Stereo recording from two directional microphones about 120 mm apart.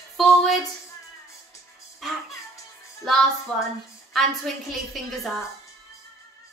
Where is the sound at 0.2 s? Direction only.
Centre (ahead or behind).